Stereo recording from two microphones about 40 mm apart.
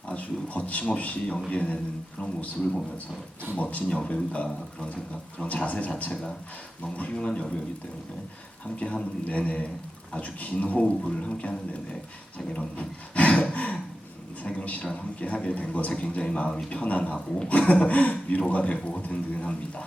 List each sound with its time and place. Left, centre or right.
0.1 s a man's voice: left
5.5 s speech: left
6.9 s speech: left
8.6 s speech: left
11.0 s a man's voice: centre
12.5 s speech: left
16.6 s speech: left